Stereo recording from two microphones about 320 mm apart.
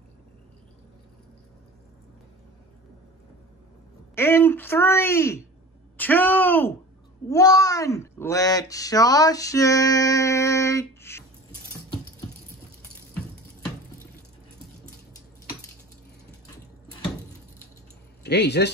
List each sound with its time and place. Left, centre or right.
4.1 s a woman's voice: centre
18.2 s speech: left